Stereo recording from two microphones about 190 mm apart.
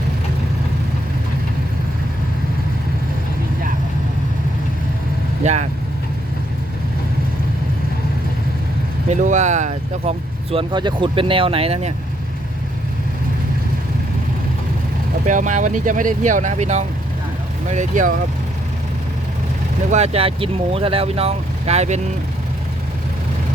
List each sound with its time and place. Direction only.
5.4 s speech: 35° right (ahead or behind)
9.0 s speech: 40° right (ahead or behind)
15.3 s speech: 40° right (ahead or behind)
19.9 s speech: 35° right (ahead or behind)